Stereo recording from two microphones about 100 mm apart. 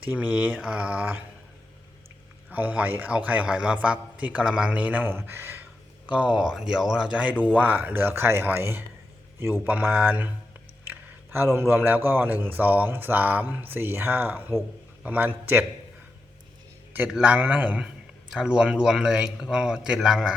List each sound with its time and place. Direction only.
0.0 s a man's voice: 15° right (ahead or behind)
2.5 s a man's voice: 15° right (ahead or behind)
17.1 s a man's voice: 10° right (ahead or behind)